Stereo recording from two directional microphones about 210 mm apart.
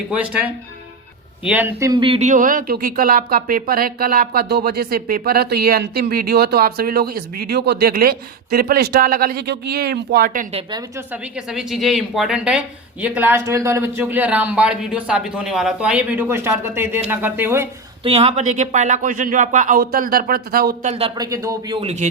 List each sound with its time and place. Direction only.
0.1 s speech: 5° right (ahead or behind); by 10.4 s 45° right (ahead or behind)
10.5 s speech: 20° right (ahead or behind)
11.1 s speech: 5° right (ahead or behind)
18.0 s speech: 25° right (ahead or behind); by 20.9 s 45° right (ahead or behind)
20.9 s speech: 25° right (ahead or behind)
21.2 s speech: 15° right (ahead or behind); by 22.1 s 30° right (ahead or behind)